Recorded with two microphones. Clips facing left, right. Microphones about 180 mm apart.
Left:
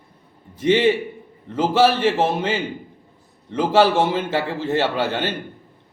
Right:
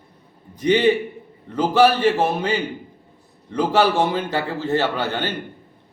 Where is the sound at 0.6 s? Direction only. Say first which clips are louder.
Even; centre (ahead or behind).